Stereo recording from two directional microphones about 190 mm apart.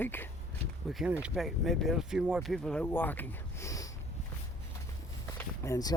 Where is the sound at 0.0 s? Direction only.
10° left (ahead or behind).